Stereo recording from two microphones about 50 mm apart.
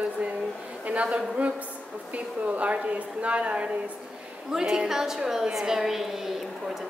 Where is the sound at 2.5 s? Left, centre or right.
Right.